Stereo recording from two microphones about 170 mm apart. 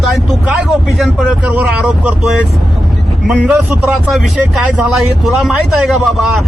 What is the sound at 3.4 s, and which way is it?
Speech, 10° right (ahead or behind).